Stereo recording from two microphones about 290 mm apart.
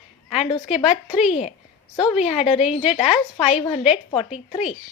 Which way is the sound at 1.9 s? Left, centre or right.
Centre.